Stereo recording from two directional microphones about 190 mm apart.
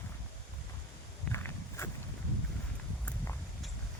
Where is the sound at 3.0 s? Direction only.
10° left (ahead or behind).